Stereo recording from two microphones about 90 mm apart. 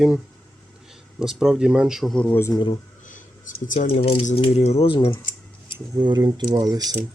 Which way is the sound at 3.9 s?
90° left.